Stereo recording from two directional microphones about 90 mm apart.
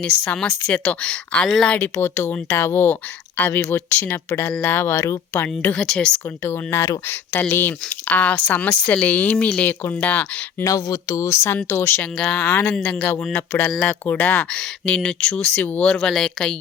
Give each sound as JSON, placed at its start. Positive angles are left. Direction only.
{"t": 0.7, "sound": "speech", "side_deg": 10}
{"t": 5.7, "sound": "speech", "side_deg": 5}
{"t": 6.4, "sound": "speech", "side_deg": 25}
{"t": 10.6, "sound": "speech", "side_deg": 35}